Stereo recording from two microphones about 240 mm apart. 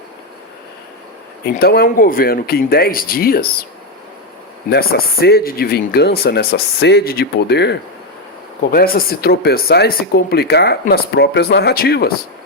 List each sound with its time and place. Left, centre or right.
1.5 s speech: left
4.7 s speech: left